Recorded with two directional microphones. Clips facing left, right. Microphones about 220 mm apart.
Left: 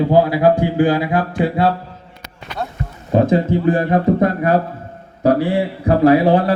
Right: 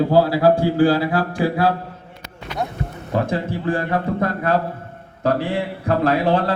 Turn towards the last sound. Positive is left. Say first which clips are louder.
# left 6 dB
turn(degrees=15)  # may be behind; listen again after turning